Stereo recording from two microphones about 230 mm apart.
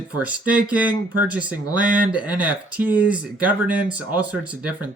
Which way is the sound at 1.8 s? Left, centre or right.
Right.